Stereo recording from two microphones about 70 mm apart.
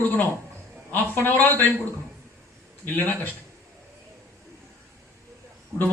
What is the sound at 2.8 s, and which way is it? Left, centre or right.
Speech, left.